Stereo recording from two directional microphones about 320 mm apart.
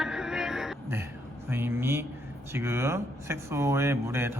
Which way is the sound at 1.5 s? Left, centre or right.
Centre.